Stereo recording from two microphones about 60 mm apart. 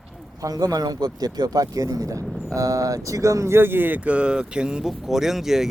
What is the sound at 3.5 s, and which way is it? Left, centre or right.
Speech, right.